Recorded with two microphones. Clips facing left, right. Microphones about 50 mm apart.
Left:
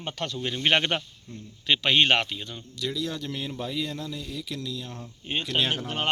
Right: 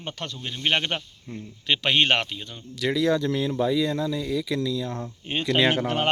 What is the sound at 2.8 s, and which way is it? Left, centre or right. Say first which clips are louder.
Speech: right 6 dB; right.